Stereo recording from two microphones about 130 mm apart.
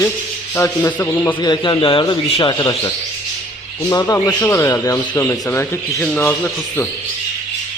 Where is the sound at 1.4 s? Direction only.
35° left (ahead or behind); by 6.8 s 15° left (ahead or behind).